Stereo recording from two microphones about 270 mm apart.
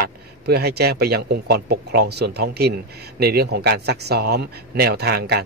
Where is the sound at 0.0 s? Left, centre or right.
Right.